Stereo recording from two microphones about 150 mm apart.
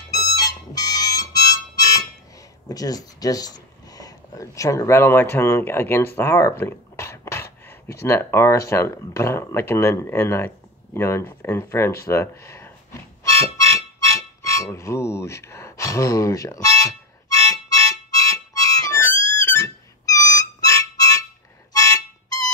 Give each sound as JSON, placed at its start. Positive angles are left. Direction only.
{"t": 0.1, "sound": "harmonica", "side_deg": 25}
{"t": 2.7, "sound": "speech", "side_deg": 25}
{"t": 6.1, "sound": "a sound", "side_deg": 15}
{"t": 8.1, "sound": "speech", "side_deg": 15}
{"t": 13.2, "sound": "music", "side_deg": 20}
{"t": 21.7, "sound": "harmonica", "side_deg": 20}